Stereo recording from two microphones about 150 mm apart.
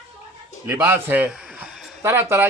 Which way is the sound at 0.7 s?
15° right (ahead or behind).